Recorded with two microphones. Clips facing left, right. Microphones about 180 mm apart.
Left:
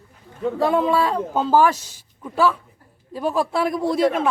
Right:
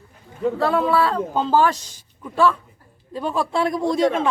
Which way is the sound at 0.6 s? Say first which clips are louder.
Left 1 dB; 15° left (ahead or behind).